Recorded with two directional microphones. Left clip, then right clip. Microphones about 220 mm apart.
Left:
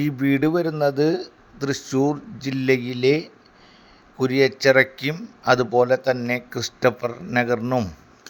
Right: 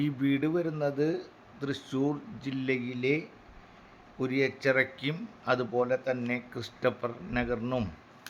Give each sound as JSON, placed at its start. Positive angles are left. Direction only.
{"t": 0.0, "sound": "speech", "side_deg": 30}